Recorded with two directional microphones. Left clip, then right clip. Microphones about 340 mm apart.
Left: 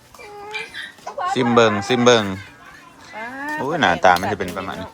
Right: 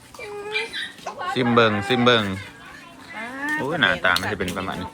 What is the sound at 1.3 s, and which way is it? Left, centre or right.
Speech, centre.